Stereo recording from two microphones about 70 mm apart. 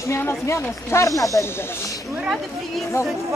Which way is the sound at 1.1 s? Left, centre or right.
Left.